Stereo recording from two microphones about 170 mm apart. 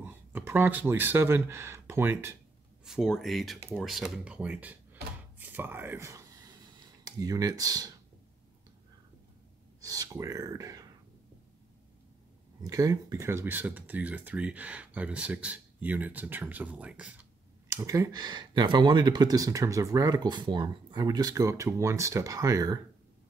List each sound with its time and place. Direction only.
0.0 s speech: 10° right (ahead or behind)
2.8 s speech: centre (ahead or behind)
5.4 s a sound: 10° right (ahead or behind)
7.1 s speech: 20° right (ahead or behind)
9.8 s speech: 20° right (ahead or behind)
12.6 s speech: 20° right (ahead or behind)
17.6 s speech: 20° right (ahead or behind)